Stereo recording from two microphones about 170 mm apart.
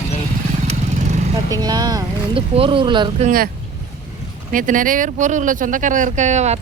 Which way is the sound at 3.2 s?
55° right (ahead or behind).